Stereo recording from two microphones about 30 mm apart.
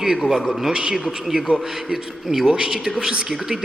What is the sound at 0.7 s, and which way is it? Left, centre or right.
Speech, right.